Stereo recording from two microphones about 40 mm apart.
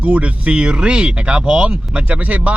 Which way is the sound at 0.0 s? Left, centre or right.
Right.